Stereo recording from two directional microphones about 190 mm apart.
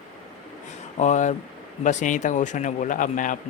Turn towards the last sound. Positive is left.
turn(degrees=45)  # may be behind; listen again after turning